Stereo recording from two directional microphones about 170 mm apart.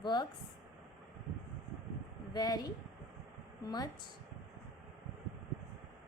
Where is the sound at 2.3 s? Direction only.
25° left (ahead or behind).